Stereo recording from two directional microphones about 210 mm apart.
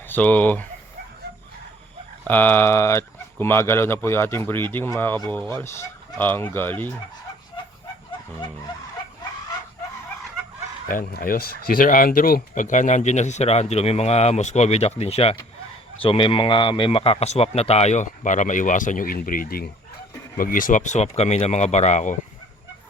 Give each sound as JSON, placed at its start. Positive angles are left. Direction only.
{"t": 0.1, "sound": "speech", "side_deg": 5}
{"t": 2.2, "sound": "speech", "side_deg": 10}
{"t": 10.8, "sound": "a man's voice", "side_deg": 40}